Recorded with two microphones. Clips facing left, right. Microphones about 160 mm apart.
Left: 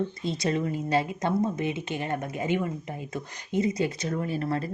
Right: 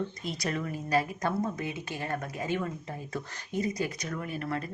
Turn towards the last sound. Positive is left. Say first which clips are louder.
# left 5 dB
turn(degrees=30)  # may be behind; listen again after turning